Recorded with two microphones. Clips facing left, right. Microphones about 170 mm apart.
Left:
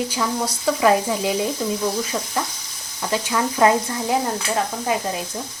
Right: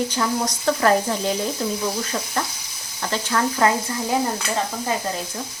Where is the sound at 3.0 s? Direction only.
10° left (ahead or behind).